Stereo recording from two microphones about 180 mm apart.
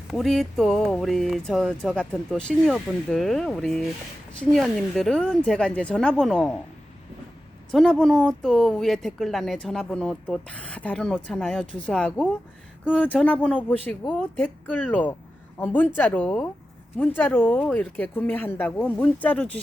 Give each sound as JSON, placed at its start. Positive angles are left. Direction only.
{"t": 0.1, "sound": "a woman's voice", "side_deg": 0}
{"t": 7.7, "sound": "a woman's voice", "side_deg": 5}